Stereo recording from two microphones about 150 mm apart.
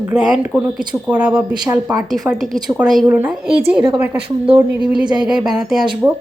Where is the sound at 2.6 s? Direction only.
5° right (ahead or behind).